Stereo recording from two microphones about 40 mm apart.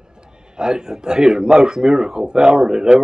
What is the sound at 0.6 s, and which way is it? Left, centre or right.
A man's voice, centre.